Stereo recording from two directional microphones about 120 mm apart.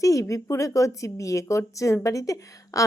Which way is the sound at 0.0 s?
25° left (ahead or behind).